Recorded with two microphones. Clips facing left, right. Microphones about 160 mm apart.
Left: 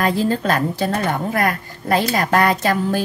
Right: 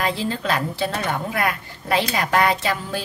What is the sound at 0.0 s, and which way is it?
A woman's voice, 45° left (ahead or behind).